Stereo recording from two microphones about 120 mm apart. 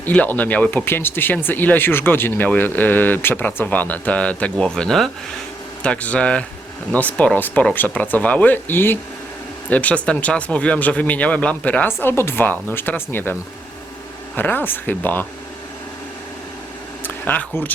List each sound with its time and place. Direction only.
0.0 s speech: 15° left (ahead or behind)
14.3 s speech: 15° left (ahead or behind)
17.0 s speech: 15° left (ahead or behind)